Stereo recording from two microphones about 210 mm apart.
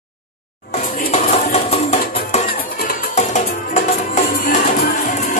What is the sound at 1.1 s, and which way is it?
Music, 30° left (ahead or behind).